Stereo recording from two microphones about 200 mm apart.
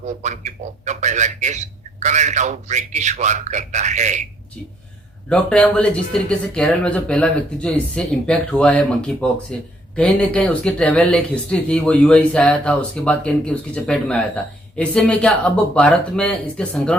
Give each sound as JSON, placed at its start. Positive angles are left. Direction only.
{"t": 0.0, "sound": "a man's voice", "side_deg": -35}
{"t": 5.3, "sound": "speech", "side_deg": 5}